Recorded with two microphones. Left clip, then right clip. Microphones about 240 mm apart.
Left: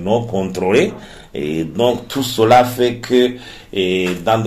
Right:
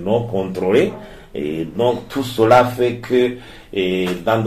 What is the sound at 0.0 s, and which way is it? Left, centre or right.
Speech, left.